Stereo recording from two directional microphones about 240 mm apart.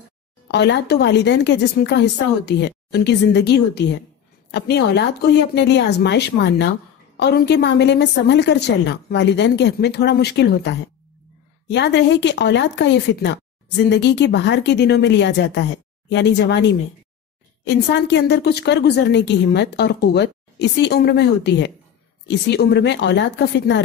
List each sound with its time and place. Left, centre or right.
0.5 s a woman's voice: left